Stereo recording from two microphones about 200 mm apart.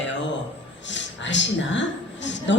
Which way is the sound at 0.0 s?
65° left (ahead or behind).